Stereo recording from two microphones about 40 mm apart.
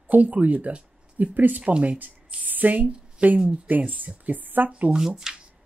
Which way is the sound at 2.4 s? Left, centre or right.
Right.